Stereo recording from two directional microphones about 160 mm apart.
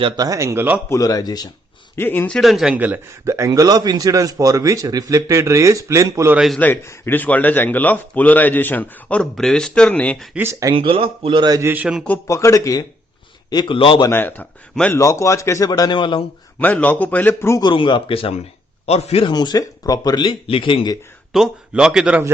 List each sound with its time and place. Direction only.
0.0 s speech: 20° right (ahead or behind)
0.9 s speech: 20° left (ahead or behind)
2.0 s a man's voice: 10° left (ahead or behind); by 6.3 s 20° right (ahead or behind)
6.3 s a man's voice: centre (ahead or behind)
6.6 s speech: 15° left (ahead or behind)
10.3 s speech: 15° right (ahead or behind)
10.8 s speech: 35° right (ahead or behind)
11.7 s speech: 5° right (ahead or behind)
12.0 s speech: 15° left (ahead or behind); by 14.1 s 35° left (ahead or behind)
14.1 s speech: 10° left (ahead or behind); by 16.2 s 30° left (ahead or behind)
16.6 s speech: 10° left (ahead or behind)
17.6 s speech: 30° left (ahead or behind)
19.3 s speech: 25° left (ahead or behind)
21.3 s a man's voice: 5° right (ahead or behind)